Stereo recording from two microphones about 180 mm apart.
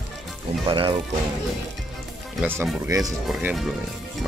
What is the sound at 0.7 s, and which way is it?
Speech, 30° right (ahead or behind).